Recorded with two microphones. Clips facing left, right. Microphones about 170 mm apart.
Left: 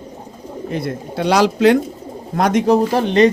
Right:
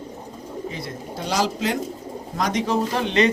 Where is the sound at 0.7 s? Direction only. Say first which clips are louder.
Left 8 dB; 60° left (ahead or behind).